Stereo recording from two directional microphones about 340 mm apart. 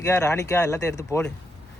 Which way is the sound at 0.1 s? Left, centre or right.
Centre.